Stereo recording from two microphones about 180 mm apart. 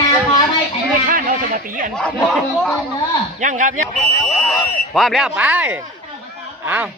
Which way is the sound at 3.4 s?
45° right (ahead or behind).